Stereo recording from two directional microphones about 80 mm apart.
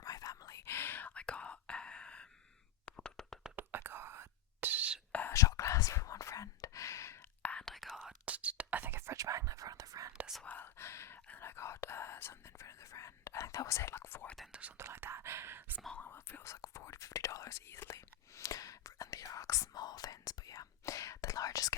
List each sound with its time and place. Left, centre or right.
0.0 s whispering: left; by 3.3 s centre
3.5 s whispering: right
5.3 s whispering: left
7.6 s whispering: centre
8.0 s whispering: centre; by 10.1 s right
10.4 s whispering: left
14.8 s whispering: right
16.0 s whispering: left
19.7 s whispering: left